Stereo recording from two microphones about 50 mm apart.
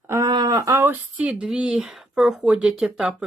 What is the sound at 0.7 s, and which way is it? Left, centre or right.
Speech, right.